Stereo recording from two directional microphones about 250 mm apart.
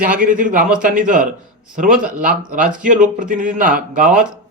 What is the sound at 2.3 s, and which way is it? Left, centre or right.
A man's voice, right.